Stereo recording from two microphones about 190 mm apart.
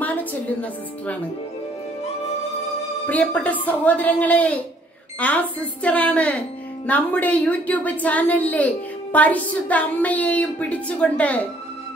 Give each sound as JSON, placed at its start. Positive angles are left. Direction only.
{"t": 0.0, "sound": "music", "side_deg": 10}
{"t": 3.1, "sound": "a woman's voice", "side_deg": 10}